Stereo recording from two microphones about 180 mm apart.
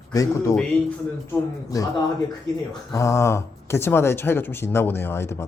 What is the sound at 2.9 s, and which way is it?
Speech, 15° left (ahead or behind).